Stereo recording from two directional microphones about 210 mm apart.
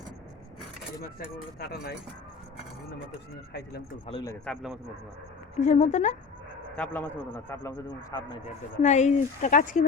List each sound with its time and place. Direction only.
1.5 s speech: 50° left (ahead or behind)
4.1 s a man's voice: 25° left (ahead or behind)
4.4 s a man's voice: centre (ahead or behind)
5.5 s speech: 35° left (ahead or behind)
6.7 s speech: 5° left (ahead or behind)
8.8 s speech: 35° left (ahead or behind)